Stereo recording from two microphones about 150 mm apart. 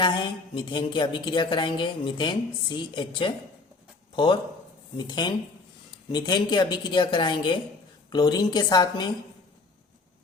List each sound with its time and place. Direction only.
0.0 s a woman's voice: 30° left (ahead or behind)